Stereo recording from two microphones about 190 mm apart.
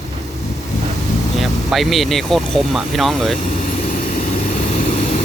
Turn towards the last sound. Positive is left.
turn(degrees=0)  # may be behind; listen again after turning